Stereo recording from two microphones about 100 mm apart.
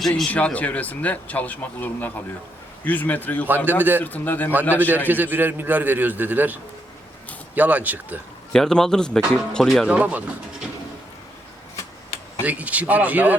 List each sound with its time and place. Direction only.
0.0 s speech: 5° left (ahead or behind)
0.3 s speech: 15° left (ahead or behind)
3.7 s a man's voice: 20° right (ahead or behind)
4.0 s speech: 15° left (ahead or behind)
4.7 s a man's voice: 15° right (ahead or behind)
8.5 s speech: 5° left (ahead or behind)
9.8 s a man's voice: 15° right (ahead or behind)
12.5 s a man's voice: 15° right (ahead or behind)